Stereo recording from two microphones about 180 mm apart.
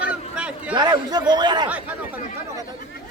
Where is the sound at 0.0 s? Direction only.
5° right (ahead or behind).